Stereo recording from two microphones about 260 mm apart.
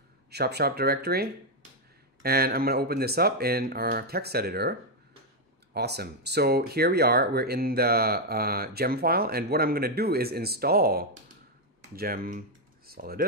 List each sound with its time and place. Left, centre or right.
0.3 s speech: right